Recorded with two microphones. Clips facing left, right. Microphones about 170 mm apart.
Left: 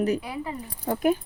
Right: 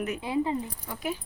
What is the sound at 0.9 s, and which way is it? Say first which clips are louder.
Speech: left 13 dB; 50° left (ahead or behind).